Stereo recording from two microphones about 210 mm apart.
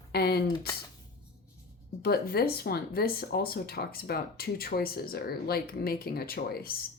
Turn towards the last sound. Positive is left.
turn(degrees=45)  # may be behind; listen again after turning